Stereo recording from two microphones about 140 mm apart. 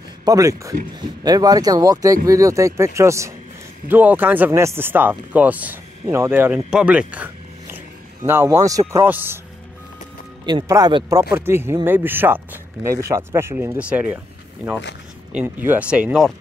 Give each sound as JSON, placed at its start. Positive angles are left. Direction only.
{"t": 0.2, "sound": "speech", "side_deg": -25}
{"t": 10.4, "sound": "speech", "side_deg": -30}
{"t": 15.3, "sound": "speech", "side_deg": -15}